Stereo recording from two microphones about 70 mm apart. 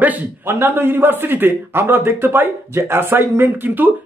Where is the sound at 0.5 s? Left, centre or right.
Right.